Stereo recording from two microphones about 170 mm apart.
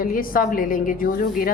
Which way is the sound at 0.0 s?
55° left (ahead or behind).